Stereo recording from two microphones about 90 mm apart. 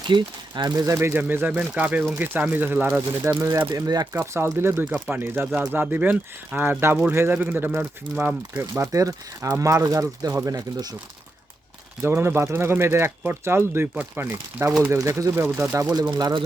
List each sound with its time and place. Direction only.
0.1 s speech: 60° right (ahead or behind)
0.9 s speech: 25° right (ahead or behind)
3.8 s speech: 45° right (ahead or behind)
4.1 s speech: 30° right (ahead or behind)
4.9 s speech: 10° right (ahead or behind)
5.2 s speech: 25° right (ahead or behind)
8.1 s speech: 10° right (ahead or behind)
8.5 s speech: 30° right (ahead or behind)
12.0 s speech: 25° right (ahead or behind)
13.9 s speech: 15° right (ahead or behind)
14.6 s speech: 35° right (ahead or behind)
15.4 s speech: 20° right (ahead or behind)
16.0 s speech: 50° right (ahead or behind)